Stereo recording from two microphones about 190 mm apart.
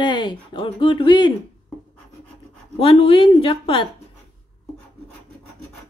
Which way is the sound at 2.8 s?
30° left (ahead or behind).